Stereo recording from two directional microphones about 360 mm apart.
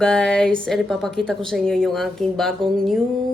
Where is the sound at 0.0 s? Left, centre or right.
Centre.